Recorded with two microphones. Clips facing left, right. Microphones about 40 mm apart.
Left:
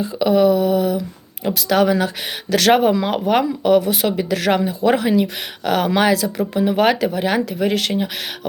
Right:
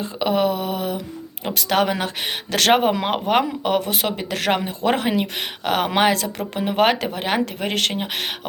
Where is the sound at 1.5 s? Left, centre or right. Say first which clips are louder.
Left 4 dB; right.